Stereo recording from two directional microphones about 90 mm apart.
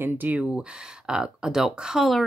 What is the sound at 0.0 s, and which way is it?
Speech, 20° right (ahead or behind).